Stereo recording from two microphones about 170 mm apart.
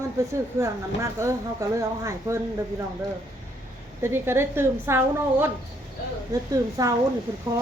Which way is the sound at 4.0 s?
15° right (ahead or behind).